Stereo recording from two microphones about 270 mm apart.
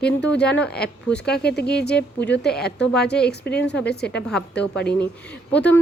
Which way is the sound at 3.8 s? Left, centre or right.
Left.